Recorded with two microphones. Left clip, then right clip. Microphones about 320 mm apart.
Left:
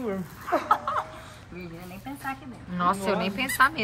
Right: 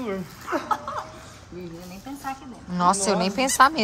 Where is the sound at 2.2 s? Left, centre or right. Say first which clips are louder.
Right 2 dB; centre.